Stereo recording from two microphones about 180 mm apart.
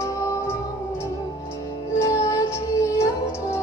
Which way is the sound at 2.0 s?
15° left (ahead or behind).